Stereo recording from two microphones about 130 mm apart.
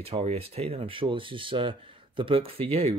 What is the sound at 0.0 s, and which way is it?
Speech, 50° right (ahead or behind).